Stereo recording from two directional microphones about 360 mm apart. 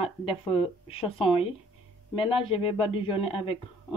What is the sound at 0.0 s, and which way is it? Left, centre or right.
Speech, centre.